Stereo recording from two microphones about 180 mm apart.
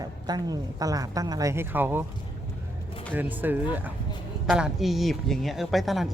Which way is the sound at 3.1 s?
10° right (ahead or behind).